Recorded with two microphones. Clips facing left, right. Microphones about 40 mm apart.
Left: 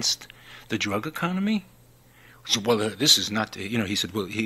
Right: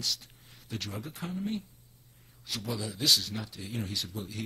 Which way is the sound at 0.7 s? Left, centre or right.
Left.